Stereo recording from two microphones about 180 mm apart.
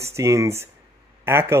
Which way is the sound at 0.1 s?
15° right (ahead or behind).